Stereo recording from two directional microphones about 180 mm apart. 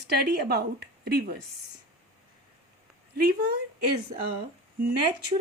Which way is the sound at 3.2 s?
60° right (ahead or behind).